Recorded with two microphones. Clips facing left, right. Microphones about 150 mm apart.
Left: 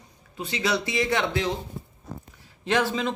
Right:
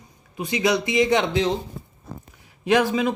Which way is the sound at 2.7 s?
15° right (ahead or behind).